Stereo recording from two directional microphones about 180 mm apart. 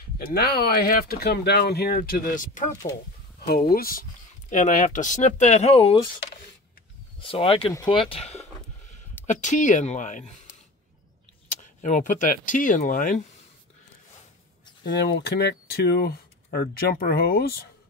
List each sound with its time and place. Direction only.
0.2 s speech: 55° left (ahead or behind)
3.3 s speech: 55° left (ahead or behind); by 5.9 s 35° left (ahead or behind)
7.2 s speech: 30° left (ahead or behind)
8.1 s speech: 35° left (ahead or behind)
11.8 s speech: 45° left (ahead or behind)
14.8 s speech: 65° left (ahead or behind)